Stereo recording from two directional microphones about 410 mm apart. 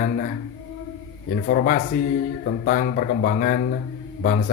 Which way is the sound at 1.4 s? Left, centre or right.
Centre.